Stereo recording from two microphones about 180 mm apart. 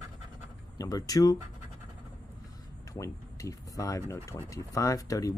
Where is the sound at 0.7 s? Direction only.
20° left (ahead or behind).